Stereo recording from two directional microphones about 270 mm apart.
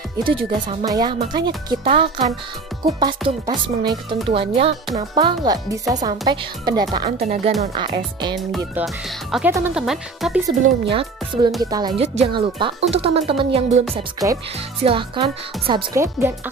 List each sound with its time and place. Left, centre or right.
0.2 s speech: centre
8.4 s speech: centre
10.6 s speech: right